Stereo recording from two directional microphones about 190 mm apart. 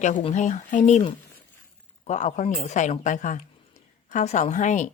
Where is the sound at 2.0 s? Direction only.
40° left (ahead or behind).